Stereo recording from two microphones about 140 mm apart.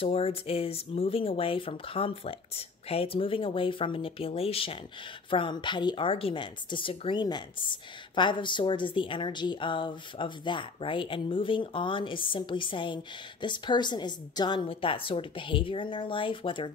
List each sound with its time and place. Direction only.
0.0 s speech: 45° left (ahead or behind)